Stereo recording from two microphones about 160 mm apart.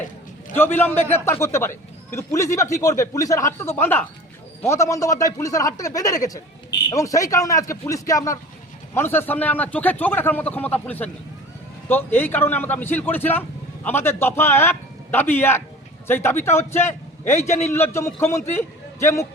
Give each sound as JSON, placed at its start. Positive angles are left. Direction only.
{"t": 0.5, "sound": "a man's voice", "side_deg": 15}